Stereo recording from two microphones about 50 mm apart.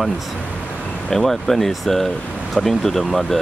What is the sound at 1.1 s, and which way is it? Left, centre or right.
Speech, centre.